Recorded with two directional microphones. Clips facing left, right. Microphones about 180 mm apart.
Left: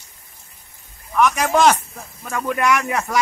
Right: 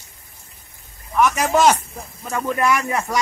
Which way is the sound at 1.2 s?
5° right (ahead or behind).